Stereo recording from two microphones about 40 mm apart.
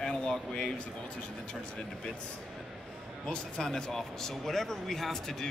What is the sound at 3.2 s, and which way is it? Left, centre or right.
A man's voice, centre.